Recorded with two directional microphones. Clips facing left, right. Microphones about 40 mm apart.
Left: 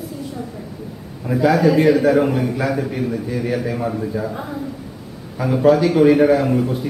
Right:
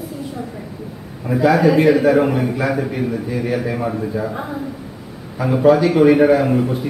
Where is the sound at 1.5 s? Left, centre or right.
Centre.